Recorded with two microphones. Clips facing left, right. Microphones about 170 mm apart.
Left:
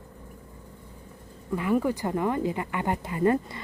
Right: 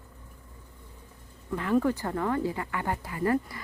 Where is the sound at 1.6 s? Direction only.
10° left (ahead or behind).